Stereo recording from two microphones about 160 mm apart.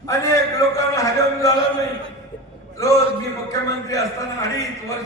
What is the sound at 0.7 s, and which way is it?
Speech, 20° left (ahead or behind).